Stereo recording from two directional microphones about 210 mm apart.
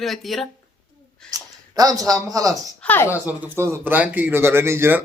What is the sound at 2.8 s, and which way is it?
Speech, 10° left (ahead or behind).